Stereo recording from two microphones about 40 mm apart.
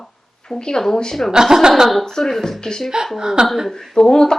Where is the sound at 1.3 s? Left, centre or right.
Centre.